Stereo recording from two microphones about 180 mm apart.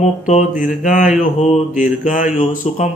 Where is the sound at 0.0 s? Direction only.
40° left (ahead or behind).